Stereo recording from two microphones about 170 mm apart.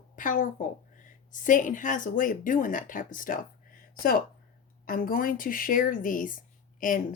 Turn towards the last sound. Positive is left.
turn(degrees=50)  # may be behind; listen again after turning